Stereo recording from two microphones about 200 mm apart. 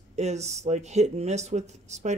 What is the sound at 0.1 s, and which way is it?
Speech, 35° right (ahead or behind).